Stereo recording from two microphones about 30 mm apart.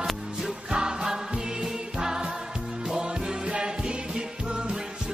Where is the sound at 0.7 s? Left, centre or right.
Right.